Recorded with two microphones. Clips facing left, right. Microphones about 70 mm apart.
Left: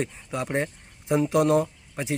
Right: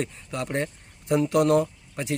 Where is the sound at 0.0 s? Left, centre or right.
Centre.